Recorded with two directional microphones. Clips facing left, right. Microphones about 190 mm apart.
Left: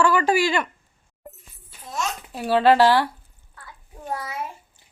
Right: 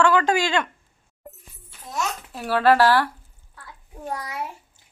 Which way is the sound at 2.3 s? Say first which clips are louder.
Left 2 dB; 15° left (ahead or behind).